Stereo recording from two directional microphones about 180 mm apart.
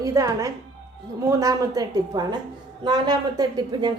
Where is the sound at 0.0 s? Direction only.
20° right (ahead or behind).